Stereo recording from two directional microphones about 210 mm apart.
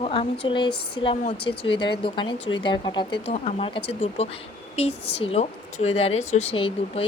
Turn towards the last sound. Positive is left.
turn(degrees=25)  # may be behind; listen again after turning